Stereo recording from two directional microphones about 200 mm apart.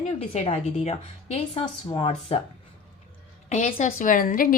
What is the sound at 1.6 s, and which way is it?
Speech, 20° left (ahead or behind).